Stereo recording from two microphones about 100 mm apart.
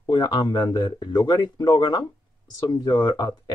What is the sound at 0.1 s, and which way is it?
Speech, 50° left (ahead or behind).